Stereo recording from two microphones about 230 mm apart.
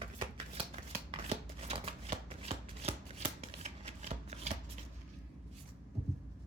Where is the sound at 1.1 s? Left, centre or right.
Right.